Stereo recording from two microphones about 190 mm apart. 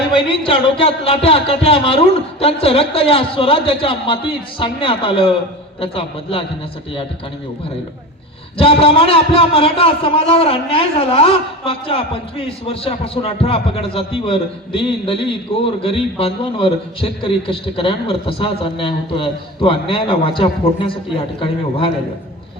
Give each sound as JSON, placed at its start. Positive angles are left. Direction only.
{"t": 0.2, "sound": "a man's voice", "side_deg": 30}
{"t": 8.5, "sound": "a man's voice", "side_deg": 30}